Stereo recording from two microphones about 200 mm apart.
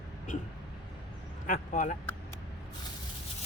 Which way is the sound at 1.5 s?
40° left (ahead or behind).